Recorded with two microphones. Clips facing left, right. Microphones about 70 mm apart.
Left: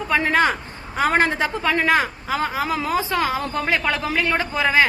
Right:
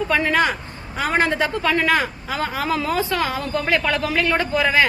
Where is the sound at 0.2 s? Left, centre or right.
Left.